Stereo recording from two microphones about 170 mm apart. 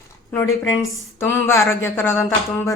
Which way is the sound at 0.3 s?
20° left (ahead or behind).